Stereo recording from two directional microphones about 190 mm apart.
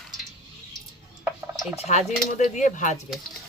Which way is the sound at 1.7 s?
35° left (ahead or behind).